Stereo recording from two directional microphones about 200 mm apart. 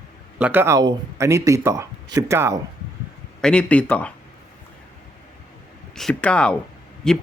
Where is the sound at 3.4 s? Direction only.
5° left (ahead or behind).